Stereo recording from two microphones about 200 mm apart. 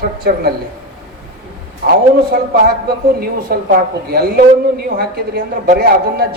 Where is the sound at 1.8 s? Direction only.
50° right (ahead or behind).